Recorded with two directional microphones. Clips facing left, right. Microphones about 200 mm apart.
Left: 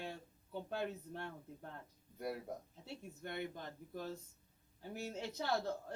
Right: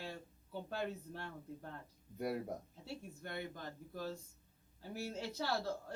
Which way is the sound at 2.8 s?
20° left (ahead or behind).